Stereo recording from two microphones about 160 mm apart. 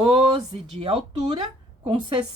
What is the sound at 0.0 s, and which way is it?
Speech, 35° right (ahead or behind).